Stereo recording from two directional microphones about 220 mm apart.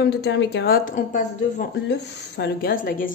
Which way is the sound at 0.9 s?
35° left (ahead or behind).